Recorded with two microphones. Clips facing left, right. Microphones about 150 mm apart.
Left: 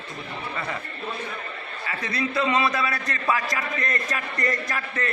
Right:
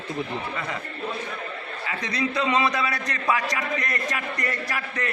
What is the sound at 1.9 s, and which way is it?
A man's voice, 15° right (ahead or behind).